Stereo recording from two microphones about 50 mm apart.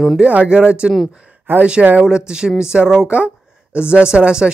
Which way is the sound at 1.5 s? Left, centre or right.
Right.